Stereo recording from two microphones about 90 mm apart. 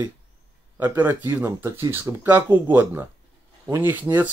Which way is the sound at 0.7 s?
25° right (ahead or behind).